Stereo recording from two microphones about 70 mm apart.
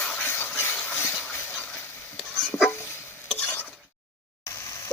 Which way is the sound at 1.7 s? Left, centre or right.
Left.